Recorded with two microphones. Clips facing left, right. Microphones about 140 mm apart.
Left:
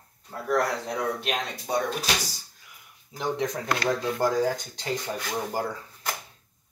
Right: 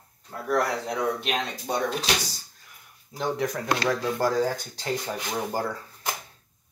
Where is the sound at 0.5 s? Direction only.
5° right (ahead or behind).